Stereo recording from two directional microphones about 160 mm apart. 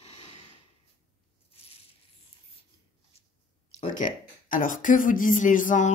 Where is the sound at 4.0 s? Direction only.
55° left (ahead or behind).